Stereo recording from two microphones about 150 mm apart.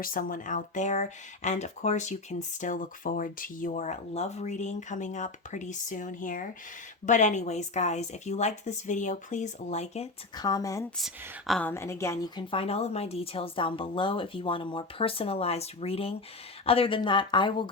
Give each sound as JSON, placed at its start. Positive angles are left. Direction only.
{"t": 0.0, "sound": "speech", "side_deg": 65}
{"t": 10.3, "sound": "a woman's voice", "side_deg": 25}
{"t": 10.9, "sound": "speech", "side_deg": 0}
{"t": 11.6, "sound": "a woman's voice", "side_deg": 15}
{"t": 12.4, "sound": "speech", "side_deg": 35}